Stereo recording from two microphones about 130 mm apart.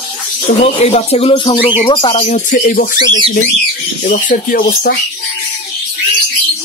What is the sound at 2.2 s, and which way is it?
Speech, 70° left (ahead or behind).